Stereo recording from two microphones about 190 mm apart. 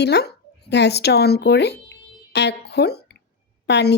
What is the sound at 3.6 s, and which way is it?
Speech, 60° left (ahead or behind).